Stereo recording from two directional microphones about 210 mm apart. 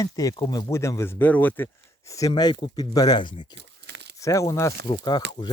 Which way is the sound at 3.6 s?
55° right (ahead or behind).